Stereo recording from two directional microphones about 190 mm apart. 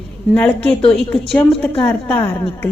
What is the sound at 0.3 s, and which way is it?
A woman's voice, 5° left (ahead or behind).